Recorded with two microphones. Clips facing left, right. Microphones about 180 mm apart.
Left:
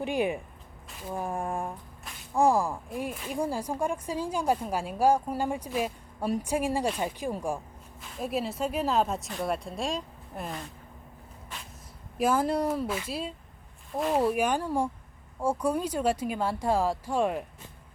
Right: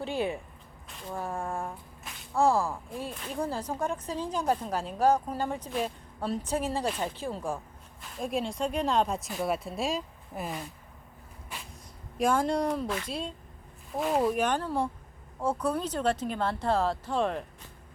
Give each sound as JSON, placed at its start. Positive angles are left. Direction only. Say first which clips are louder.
{"t": 0.0, "sound": "speech", "louder": "left 3 dB", "side_deg": 15}
{"t": 0.9, "sound": "a sound", "louder": "left 2 dB", "side_deg": 5}
{"t": 1.1, "sound": "speech", "louder": "left 2 dB", "side_deg": 15}
{"t": 8.0, "sound": "speech", "louder": "even", "side_deg": 0}
{"t": 12.1, "sound": "speech", "louder": "left 1 dB", "side_deg": 5}